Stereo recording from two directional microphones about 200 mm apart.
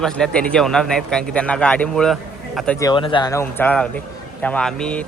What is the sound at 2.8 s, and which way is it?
Speech, 25° left (ahead or behind).